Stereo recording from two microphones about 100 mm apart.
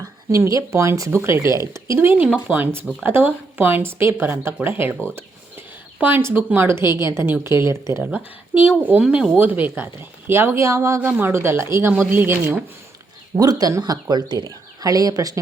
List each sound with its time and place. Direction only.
0.3 s a woman's voice: 30° right (ahead or behind)
5.0 s a sound: 25° right (ahead or behind)
6.0 s a woman's voice: 15° right (ahead or behind)
8.0 s a woman's voice: 15° right (ahead or behind); by 11.0 s 30° right (ahead or behind)
11.0 s a woman's voice: 20° right (ahead or behind)
13.4 s speech: 40° right (ahead or behind)